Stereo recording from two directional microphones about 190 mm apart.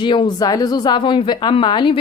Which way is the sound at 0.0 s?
25° left (ahead or behind).